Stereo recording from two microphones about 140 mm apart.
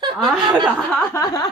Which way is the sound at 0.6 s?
Centre (ahead or behind).